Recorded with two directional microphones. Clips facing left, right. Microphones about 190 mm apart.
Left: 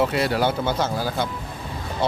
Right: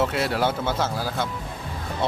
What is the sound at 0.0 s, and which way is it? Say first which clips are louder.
A man's voice: left 2 dB; centre (ahead or behind).